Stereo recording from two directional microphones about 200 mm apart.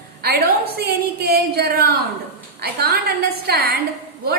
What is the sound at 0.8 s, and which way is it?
A woman's voice, 50° right (ahead or behind).